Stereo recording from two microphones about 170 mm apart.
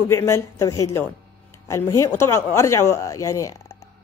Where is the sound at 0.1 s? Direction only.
15° left (ahead or behind).